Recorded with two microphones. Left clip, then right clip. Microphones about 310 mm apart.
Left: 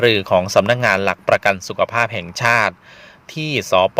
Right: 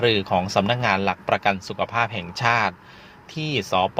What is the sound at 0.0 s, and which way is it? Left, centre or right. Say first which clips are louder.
Speech: left 6 dB; left.